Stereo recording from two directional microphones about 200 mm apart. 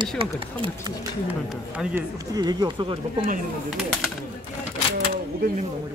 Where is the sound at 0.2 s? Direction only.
25° right (ahead or behind).